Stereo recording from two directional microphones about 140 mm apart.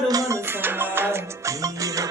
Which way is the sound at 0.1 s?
25° right (ahead or behind).